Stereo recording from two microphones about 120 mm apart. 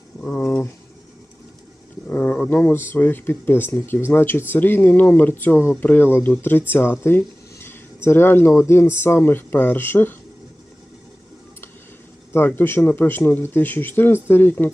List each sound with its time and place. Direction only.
0.2 s a sound: 15° left (ahead or behind)
2.0 s speech: 15° left (ahead or behind)
12.3 s speech: 15° left (ahead or behind)